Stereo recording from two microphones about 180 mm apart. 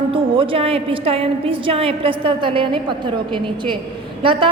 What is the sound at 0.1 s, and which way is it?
A woman's voice, 30° right (ahead or behind).